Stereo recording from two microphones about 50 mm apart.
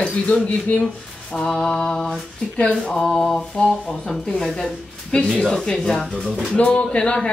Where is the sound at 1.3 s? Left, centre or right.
Centre.